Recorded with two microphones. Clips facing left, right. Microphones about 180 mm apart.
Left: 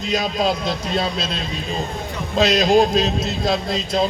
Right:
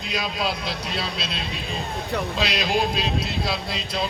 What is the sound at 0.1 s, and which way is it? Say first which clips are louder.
A man's voice: left 7 dB; 45° left (ahead or behind).